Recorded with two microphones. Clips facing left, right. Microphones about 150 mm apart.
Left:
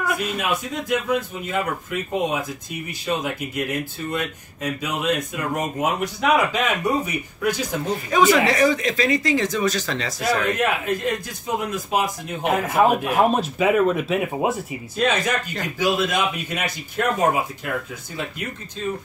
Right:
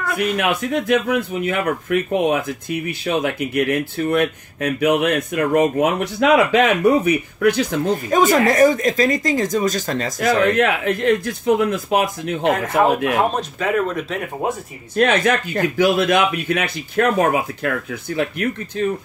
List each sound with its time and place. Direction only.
0.2 s speech: 65° right (ahead or behind)
7.9 s speech: 45° right (ahead or behind)
10.3 s speech: 60° right (ahead or behind)
12.4 s speech: 10° left (ahead or behind)
15.0 s speech: 60° right (ahead or behind)